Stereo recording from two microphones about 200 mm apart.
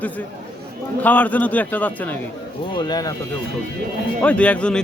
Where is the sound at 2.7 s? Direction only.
20° left (ahead or behind).